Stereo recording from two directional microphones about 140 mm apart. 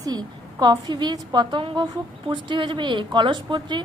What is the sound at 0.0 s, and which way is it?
A woman's voice, 30° right (ahead or behind).